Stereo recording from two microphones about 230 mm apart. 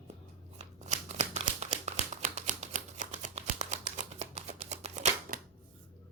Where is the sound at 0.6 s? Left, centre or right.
Right.